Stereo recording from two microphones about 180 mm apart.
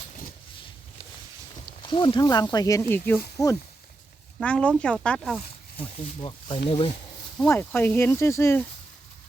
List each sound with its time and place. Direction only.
1.9 s speech: 25° left (ahead or behind)
4.4 s speech: 5° left (ahead or behind)
5.7 s speech: 30° left (ahead or behind)
7.3 s speech: 10° left (ahead or behind)